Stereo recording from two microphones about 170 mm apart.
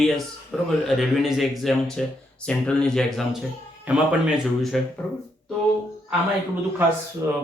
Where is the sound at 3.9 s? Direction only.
10° right (ahead or behind).